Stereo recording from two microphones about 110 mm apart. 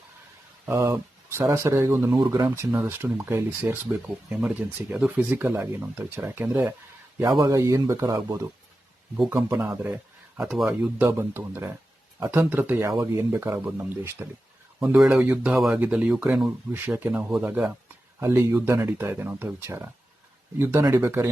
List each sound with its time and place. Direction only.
0.6 s speech: 25° right (ahead or behind)
9.1 s speech: 5° right (ahead or behind)
9.6 s speech: 20° right (ahead or behind)
10.5 s speech: 5° right (ahead or behind)
11.0 s speech: 20° right (ahead or behind)
14.8 s speech: 5° right (ahead or behind)
15.5 s speech: centre (ahead or behind); by 21.2 s 25° right (ahead or behind)